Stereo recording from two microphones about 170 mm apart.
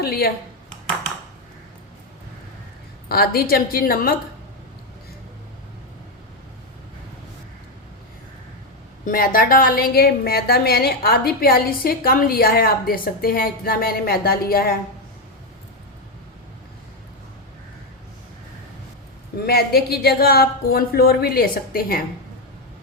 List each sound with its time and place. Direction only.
0.0 s a sound: 65° left (ahead or behind)
3.1 s a woman's voice: 65° left (ahead or behind)
9.0 s a woman's voice: 55° left (ahead or behind)
19.5 s a woman's voice: 65° left (ahead or behind)